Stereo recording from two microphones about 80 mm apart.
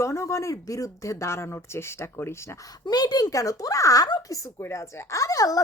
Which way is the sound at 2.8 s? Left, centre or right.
Left.